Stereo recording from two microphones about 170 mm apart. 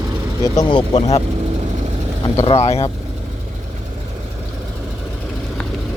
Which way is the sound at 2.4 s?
40° left (ahead or behind).